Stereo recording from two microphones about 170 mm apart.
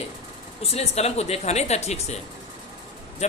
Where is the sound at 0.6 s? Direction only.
35° left (ahead or behind).